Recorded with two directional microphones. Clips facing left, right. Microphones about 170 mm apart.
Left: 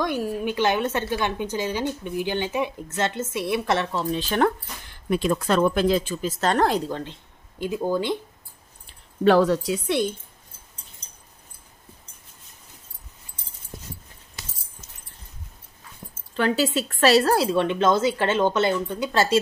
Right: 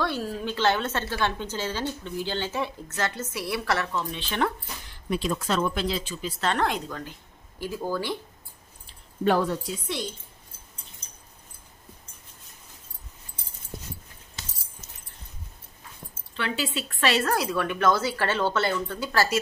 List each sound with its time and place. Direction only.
0.0 s a woman's voice: 15° left (ahead or behind); by 4.5 s 40° left (ahead or behind)
5.1 s speech: 55° left (ahead or behind); by 8.2 s 20° left (ahead or behind)
9.2 s a woman's voice: 90° left; by 10.0 s 70° left (ahead or behind)
16.3 s speech: 40° left (ahead or behind); by 19.4 s 25° left (ahead or behind)